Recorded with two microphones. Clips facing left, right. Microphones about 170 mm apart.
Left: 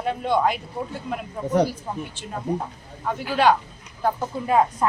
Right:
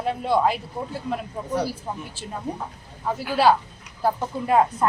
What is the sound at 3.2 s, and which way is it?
Speech, 5° right (ahead or behind).